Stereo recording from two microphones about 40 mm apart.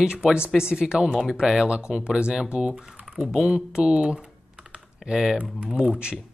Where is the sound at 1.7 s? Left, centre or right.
Right.